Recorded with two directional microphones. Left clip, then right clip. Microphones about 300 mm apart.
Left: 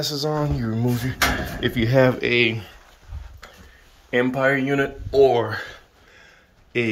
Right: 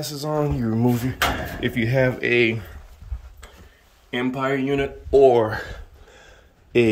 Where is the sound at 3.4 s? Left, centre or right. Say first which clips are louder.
Left 3 dB; centre.